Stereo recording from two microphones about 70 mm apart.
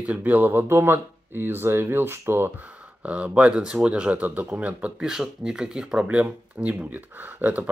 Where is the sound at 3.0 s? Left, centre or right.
Centre.